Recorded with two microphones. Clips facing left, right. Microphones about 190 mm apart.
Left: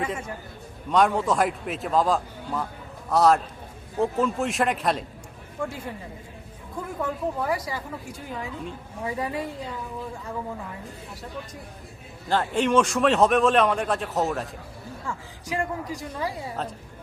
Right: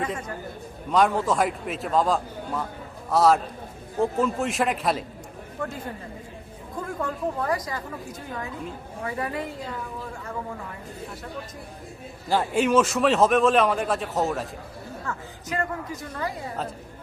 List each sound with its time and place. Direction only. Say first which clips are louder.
0.0 s a woman's voice: even; 10° left (ahead or behind)
5.6 s a woman's voice: left 1 dB; 10° left (ahead or behind)
7.0 s a woman's voice: left 1 dB; 5° left (ahead or behind)
9.0 s a woman's voice: left 1 dB; 15° left (ahead or behind)
12.3 s a man's voice: right 1 dB; 10° right (ahead or behind)
15.0 s a woman's voice: left 1 dB; 15° left (ahead or behind)